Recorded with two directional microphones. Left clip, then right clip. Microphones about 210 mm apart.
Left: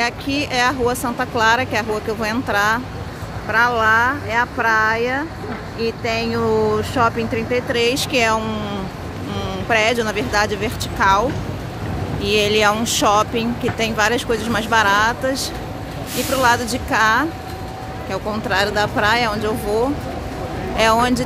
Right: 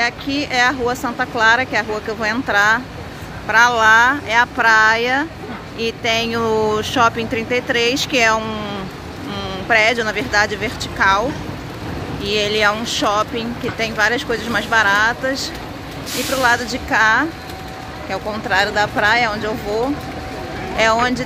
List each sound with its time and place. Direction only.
0.0 s speech: 15° left (ahead or behind)